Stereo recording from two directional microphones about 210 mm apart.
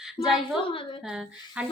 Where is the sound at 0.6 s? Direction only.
25° left (ahead or behind).